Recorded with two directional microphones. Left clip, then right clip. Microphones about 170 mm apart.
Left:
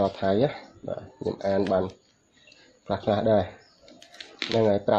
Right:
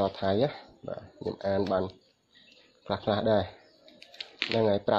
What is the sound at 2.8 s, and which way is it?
Speech, 15° right (ahead or behind).